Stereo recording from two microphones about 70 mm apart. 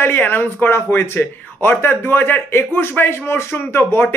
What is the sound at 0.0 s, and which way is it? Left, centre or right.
Speech, left.